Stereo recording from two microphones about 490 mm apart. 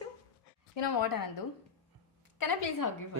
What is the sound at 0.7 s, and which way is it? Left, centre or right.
Speech, left.